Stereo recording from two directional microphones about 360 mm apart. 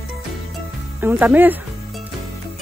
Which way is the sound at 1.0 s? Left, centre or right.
Centre.